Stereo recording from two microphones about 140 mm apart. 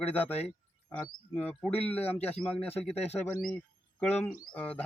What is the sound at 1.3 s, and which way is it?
Speech, 10° left (ahead or behind).